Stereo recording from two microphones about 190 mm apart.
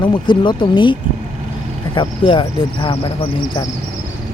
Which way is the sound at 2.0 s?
25° left (ahead or behind).